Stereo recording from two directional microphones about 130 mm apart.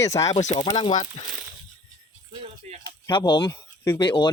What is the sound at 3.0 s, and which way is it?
Speech, 35° left (ahead or behind).